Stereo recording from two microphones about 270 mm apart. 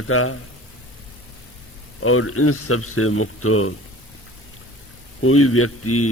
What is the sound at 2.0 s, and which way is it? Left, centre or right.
Speech, left.